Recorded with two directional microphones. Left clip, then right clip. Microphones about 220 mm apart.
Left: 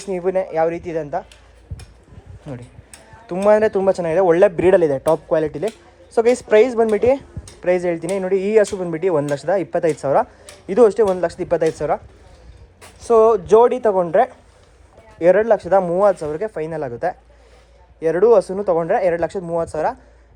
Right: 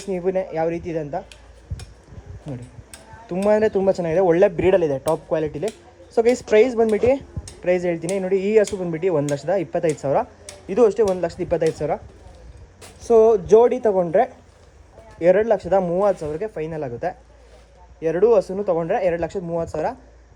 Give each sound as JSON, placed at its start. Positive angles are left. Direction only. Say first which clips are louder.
{"t": 0.3, "sound": "speech", "louder": "left 4 dB", "side_deg": 10}
{"t": 2.9, "sound": "tick-tock", "louder": "left 2 dB", "side_deg": 10}
{"t": 3.8, "sound": "speech", "louder": "left 3 dB", "side_deg": 5}
{"t": 12.8, "sound": "a sound", "louder": "left 1 dB", "side_deg": 0}
{"t": 13.5, "sound": "a man's voice", "louder": "left 2 dB", "side_deg": 5}
{"t": 15.2, "sound": "speech", "louder": "left 3 dB", "side_deg": 10}